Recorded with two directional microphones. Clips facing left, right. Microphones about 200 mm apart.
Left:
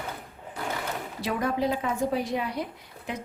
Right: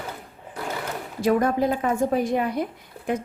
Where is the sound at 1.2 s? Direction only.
45° right (ahead or behind).